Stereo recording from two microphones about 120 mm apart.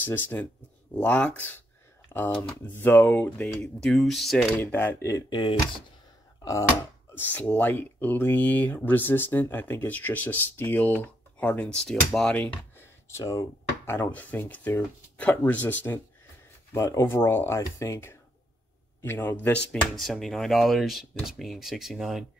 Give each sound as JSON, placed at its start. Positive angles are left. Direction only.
{"t": 0.0, "sound": "speech", "side_deg": 15}
{"t": 4.6, "sound": "speech", "side_deg": 15}
{"t": 5.3, "sound": "speech", "side_deg": 45}
{"t": 7.2, "sound": "speech", "side_deg": 15}
{"t": 13.9, "sound": "speech", "side_deg": 15}
{"t": 16.7, "sound": "speech", "side_deg": 25}